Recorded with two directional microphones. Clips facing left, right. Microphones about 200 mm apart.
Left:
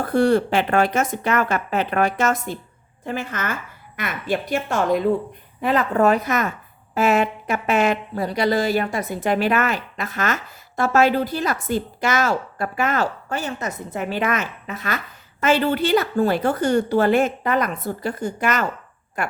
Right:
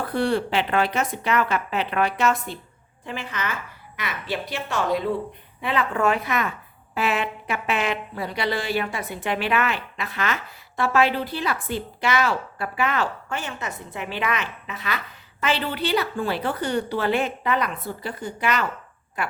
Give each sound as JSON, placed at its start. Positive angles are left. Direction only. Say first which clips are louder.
{"t": 0.0, "sound": "a woman's voice", "louder": "left 6 dB", "side_deg": 45}